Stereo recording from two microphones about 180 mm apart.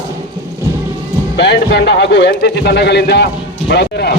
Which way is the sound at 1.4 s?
70° left (ahead or behind).